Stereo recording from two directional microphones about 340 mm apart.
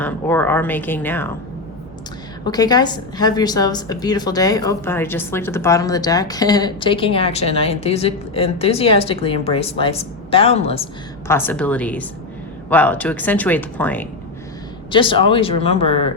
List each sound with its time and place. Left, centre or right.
0.0 s speech: centre
2.4 s a woman's voice: centre
11.3 s a woman's voice: centre